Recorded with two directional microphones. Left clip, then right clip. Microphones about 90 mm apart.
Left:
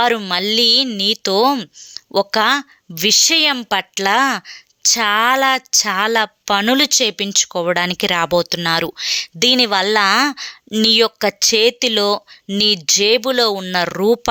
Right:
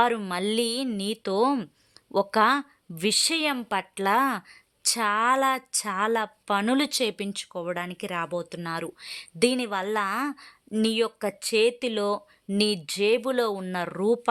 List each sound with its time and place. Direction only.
0.2 s a woman's voice: 20° left (ahead or behind)
1.2 s speech: 25° left (ahead or behind)
1.5 s a woman's voice: 15° left (ahead or behind)
7.4 s speech: 50° left (ahead or behind)
8.1 s speech: 65° left (ahead or behind)
8.4 s speech: 45° left (ahead or behind)
9.0 s speech: 25° left (ahead or behind)
12.5 s speech: 15° left (ahead or behind); by 14.2 s 35° left (ahead or behind)